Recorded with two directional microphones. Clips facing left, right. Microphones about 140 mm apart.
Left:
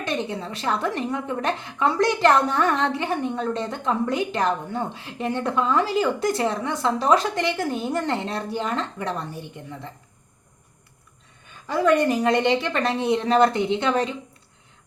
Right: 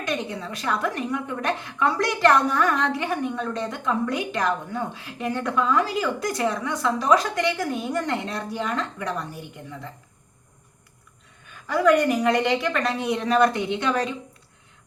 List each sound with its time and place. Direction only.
0.0 s a woman's voice: 25° left (ahead or behind)
11.7 s a woman's voice: 25° left (ahead or behind)